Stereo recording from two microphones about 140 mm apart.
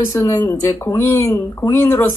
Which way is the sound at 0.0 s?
20° left (ahead or behind).